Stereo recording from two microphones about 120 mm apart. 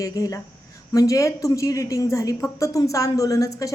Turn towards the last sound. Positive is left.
turn(degrees=30)  # may be behind; listen again after turning